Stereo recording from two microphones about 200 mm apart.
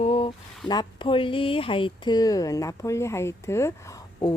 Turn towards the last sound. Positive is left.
turn(degrees=15)  # may be behind; listen again after turning